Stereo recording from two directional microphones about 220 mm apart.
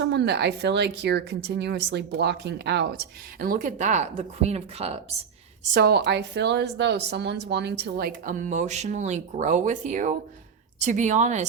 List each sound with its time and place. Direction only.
0.0 s a woman's voice: 50° right (ahead or behind); by 4.9 s 30° right (ahead or behind)
5.7 s a woman's voice: 45° right (ahead or behind)